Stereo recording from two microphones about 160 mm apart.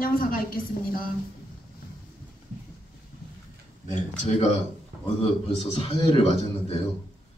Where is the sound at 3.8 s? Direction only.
50° left (ahead or behind).